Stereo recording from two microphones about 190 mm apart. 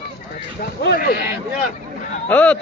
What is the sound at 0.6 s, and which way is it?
Speech, 50° left (ahead or behind).